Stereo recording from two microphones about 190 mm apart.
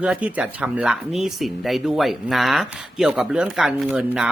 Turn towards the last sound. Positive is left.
turn(degrees=-5)  # may be behind; listen again after turning